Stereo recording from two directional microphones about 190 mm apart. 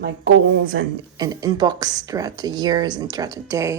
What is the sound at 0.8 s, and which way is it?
Speech, 90° right.